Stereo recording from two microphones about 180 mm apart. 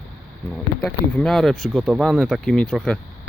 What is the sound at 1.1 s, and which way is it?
Speech, centre (ahead or behind).